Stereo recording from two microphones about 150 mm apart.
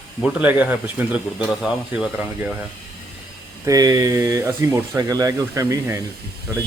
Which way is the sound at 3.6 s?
25° right (ahead or behind).